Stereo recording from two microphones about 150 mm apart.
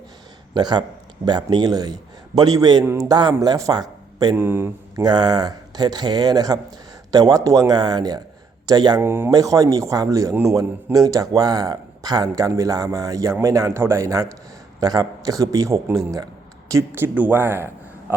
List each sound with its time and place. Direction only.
0.5 s a man's voice: 30° right (ahead or behind)
3.1 s speech: 30° right (ahead or behind)
4.4 s speech: 15° right (ahead or behind)
5.0 s a man's voice: 30° right (ahead or behind)
9.0 s a man's voice: 15° right (ahead or behind)